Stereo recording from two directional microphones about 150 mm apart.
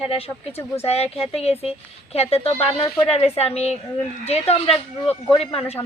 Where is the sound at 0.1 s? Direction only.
40° left (ahead or behind).